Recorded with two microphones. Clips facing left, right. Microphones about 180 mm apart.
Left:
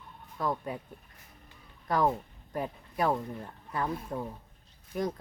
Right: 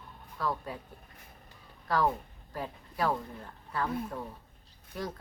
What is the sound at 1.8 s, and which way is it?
Speech, 20° left (ahead or behind).